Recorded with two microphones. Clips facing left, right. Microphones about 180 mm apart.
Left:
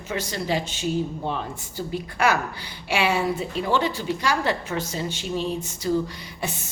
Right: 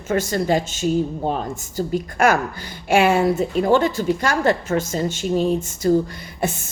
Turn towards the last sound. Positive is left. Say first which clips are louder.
# right 7 dB
turn(degrees=-50)  # may be behind; listen again after turning